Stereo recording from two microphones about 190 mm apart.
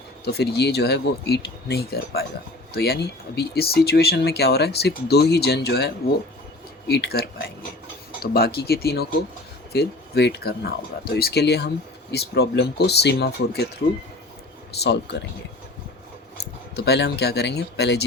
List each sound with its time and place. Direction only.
0.3 s speech: 60° left (ahead or behind)
16.7 s speech: 60° left (ahead or behind)